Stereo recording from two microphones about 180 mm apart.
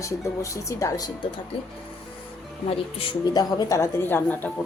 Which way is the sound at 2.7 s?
35° left (ahead or behind).